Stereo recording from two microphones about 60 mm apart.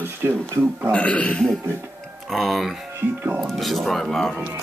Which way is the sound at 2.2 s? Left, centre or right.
Centre.